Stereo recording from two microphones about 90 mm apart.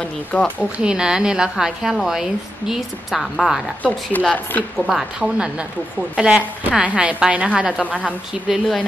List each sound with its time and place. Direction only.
0.0 s speech: 10° left (ahead or behind)
0.6 s a woman's voice: 10° right (ahead or behind)
3.8 s speech: 15° left (ahead or behind)
4.7 s a woman's voice: 5° right (ahead or behind)